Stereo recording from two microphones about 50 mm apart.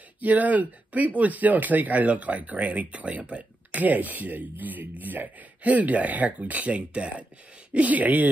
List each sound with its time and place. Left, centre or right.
0.2 s speech: right